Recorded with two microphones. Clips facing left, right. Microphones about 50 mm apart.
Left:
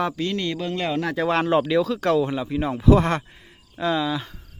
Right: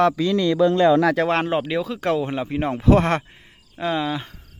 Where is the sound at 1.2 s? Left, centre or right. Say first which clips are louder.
Right 1 dB; right.